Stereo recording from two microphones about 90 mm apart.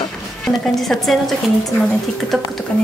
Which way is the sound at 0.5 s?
Centre (ahead or behind).